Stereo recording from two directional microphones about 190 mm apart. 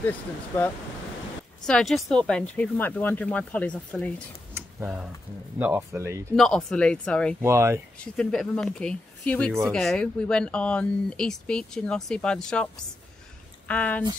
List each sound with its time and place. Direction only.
1.7 s speech: centre (ahead or behind)
4.6 s a sound: 10° right (ahead or behind)
5.6 s speech: 10° right (ahead or behind)
6.3 s speech: 5° left (ahead or behind)
7.4 s speech: 15° right (ahead or behind)
8.0 s speech: 5° left (ahead or behind)